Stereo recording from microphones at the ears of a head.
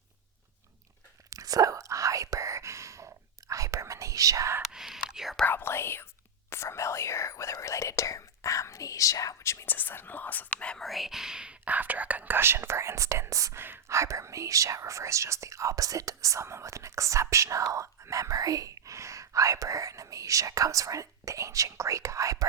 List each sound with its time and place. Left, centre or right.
1.3 s whispering: right
4.6 s whispering: centre
5.5 s whispering: left
10.9 s speech: centre
12.3 s speech: right